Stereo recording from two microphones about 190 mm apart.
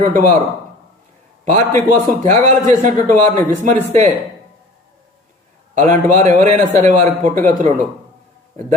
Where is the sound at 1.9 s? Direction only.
40° right (ahead or behind).